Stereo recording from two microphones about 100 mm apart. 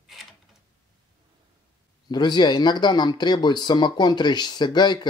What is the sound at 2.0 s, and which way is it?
Speech, 45° left (ahead or behind).